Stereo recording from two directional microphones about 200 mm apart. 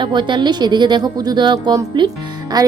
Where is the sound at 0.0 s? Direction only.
25° right (ahead or behind).